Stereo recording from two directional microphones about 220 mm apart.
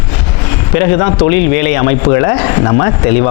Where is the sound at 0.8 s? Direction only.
25° left (ahead or behind).